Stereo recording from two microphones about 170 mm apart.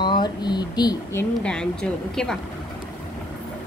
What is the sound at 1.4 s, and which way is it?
Speech, 5° left (ahead or behind).